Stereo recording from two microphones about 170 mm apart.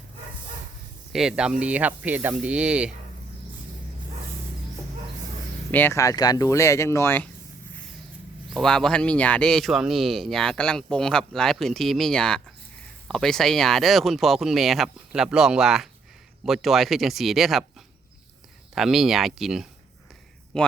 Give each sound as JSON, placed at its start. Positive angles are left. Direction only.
{"t": 1.1, "sound": "speech", "side_deg": -5}
{"t": 5.7, "sound": "speech", "side_deg": 15}
{"t": 8.5, "sound": "speech", "side_deg": 5}
{"t": 18.7, "sound": "speech", "side_deg": 0}